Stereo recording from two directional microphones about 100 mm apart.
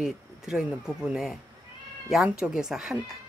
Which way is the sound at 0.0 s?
5° right (ahead or behind).